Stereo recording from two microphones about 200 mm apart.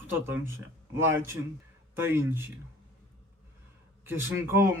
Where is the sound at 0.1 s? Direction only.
10° right (ahead or behind).